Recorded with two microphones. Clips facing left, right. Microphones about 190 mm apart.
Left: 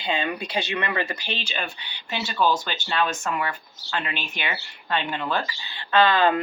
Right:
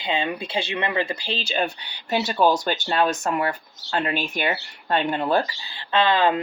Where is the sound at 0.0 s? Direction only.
25° right (ahead or behind).